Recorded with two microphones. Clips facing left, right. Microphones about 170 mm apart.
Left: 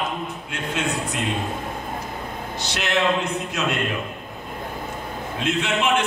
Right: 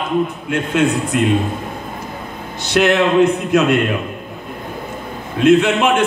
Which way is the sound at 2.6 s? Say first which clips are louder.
Right 9 dB; 55° right (ahead or behind).